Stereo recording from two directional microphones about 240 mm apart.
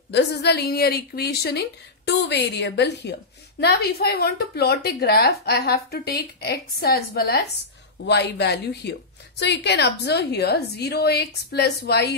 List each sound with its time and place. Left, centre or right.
0.1 s a woman's voice: left